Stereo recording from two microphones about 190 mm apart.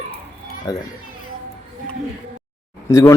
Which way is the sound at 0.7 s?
20° left (ahead or behind).